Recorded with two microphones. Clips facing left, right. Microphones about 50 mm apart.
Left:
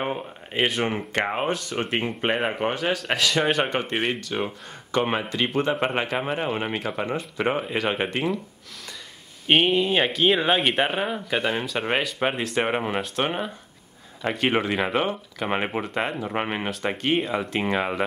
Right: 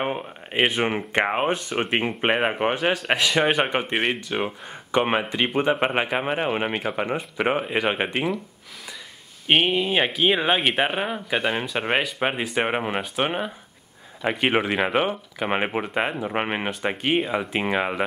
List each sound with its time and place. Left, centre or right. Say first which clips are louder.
0.7 s speech: right 2 dB; centre
9.5 s speech: left 1 dB; centre